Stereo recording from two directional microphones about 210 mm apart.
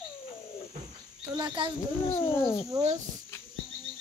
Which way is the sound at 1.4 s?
20° right (ahead or behind).